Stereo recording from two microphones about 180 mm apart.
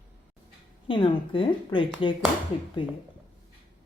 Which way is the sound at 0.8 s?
30° left (ahead or behind).